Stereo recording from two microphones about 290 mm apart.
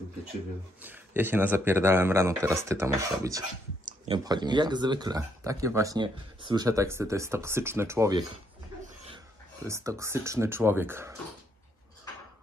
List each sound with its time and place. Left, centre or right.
0.8 s speech: centre
3.8 s a sound: right
4.2 s speech: centre
9.7 s speech: centre